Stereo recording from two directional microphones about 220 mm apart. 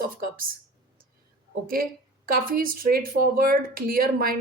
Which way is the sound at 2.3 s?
40° right (ahead or behind).